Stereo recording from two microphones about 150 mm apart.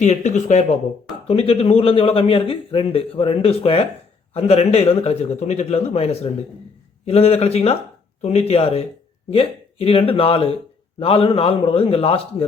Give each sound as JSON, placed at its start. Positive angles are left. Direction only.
{"t": 0.0, "sound": "a man's voice", "side_deg": 50}
{"t": 1.3, "sound": "a man's voice", "side_deg": 40}